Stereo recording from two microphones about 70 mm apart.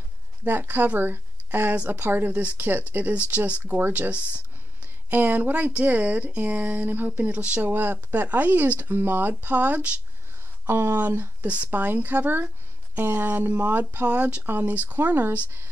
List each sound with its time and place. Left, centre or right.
0.5 s speech: right
5.1 s speech: right
10.7 s speech: right